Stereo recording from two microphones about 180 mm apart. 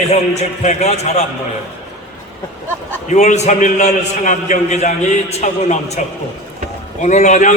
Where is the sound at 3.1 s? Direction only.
40° left (ahead or behind).